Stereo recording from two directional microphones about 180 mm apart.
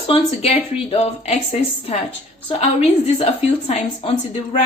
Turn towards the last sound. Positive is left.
turn(degrees=35)  # may be behind; listen again after turning